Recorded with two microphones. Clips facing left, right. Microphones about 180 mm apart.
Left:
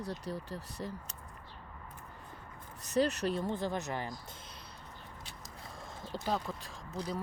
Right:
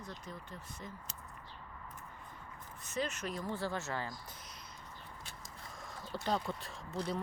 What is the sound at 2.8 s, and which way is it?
Speech, 35° left (ahead or behind).